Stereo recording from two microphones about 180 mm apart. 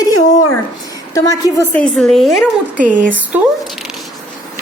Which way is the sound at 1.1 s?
20° left (ahead or behind).